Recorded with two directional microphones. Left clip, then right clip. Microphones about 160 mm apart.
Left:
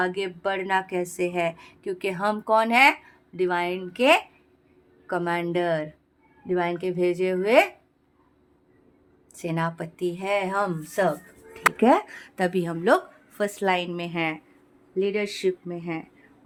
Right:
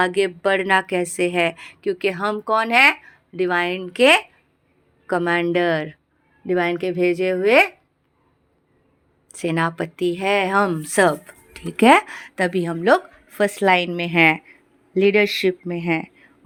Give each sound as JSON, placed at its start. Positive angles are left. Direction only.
{"t": 0.0, "sound": "a woman's voice", "side_deg": -30}
{"t": 1.9, "sound": "a woman's voice", "side_deg": -15}
{"t": 9.3, "sound": "a woman's voice", "side_deg": -25}
{"t": 11.0, "sound": "speech", "side_deg": -70}
{"t": 12.0, "sound": "speech", "side_deg": -25}
{"t": 13.2, "sound": "a woman's voice", "side_deg": -30}
{"t": 14.2, "sound": "a woman's voice", "side_deg": -40}
{"t": 15.6, "sound": "speech", "side_deg": -40}